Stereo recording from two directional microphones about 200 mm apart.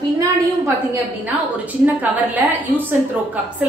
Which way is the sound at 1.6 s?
10° right (ahead or behind).